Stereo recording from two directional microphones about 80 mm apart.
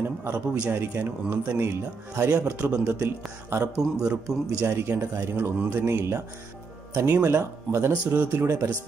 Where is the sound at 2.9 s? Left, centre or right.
Right.